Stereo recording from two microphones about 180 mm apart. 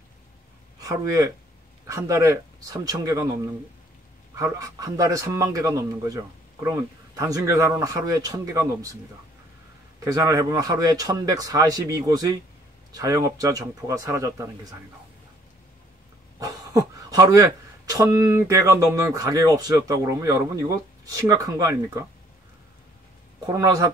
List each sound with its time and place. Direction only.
0.7 s a man's voice: 20° right (ahead or behind)
10.0 s speech: 15° right (ahead or behind)
16.3 s speech: 20° right (ahead or behind)
23.4 s speech: 20° right (ahead or behind)